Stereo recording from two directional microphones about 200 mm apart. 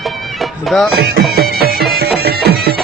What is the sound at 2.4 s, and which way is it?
Music, 50° right (ahead or behind).